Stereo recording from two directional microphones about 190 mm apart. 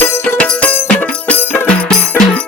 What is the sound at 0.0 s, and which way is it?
Music, 10° left (ahead or behind).